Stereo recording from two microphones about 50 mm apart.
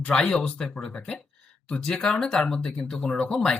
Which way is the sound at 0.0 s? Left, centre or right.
Centre.